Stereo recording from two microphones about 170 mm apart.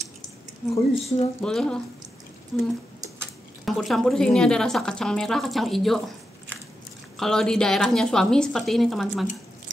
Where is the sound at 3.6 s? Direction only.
Centre (ahead or behind).